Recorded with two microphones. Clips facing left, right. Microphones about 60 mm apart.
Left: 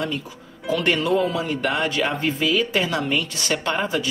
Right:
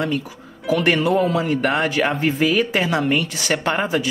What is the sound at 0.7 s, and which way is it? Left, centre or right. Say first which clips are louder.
A woman's voice: right 3 dB; centre.